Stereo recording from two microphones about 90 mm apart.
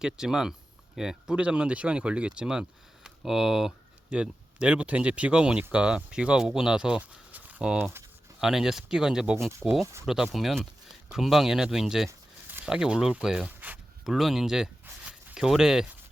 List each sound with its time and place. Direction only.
0.0 s speech: 5° right (ahead or behind)
9.5 s speech: 30° right (ahead or behind)
10.3 s speech: centre (ahead or behind)